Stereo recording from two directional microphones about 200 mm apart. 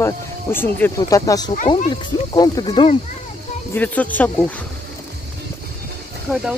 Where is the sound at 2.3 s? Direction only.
20° left (ahead or behind).